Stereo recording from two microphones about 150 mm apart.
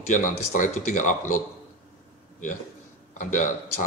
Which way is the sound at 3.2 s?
60° left (ahead or behind).